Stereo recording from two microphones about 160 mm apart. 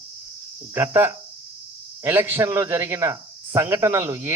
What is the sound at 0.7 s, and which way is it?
Speech, 15° right (ahead or behind).